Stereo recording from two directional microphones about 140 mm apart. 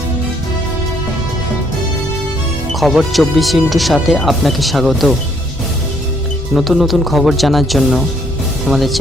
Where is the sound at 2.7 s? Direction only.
Centre (ahead or behind).